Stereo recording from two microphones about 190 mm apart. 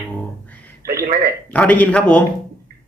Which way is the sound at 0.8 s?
15° right (ahead or behind).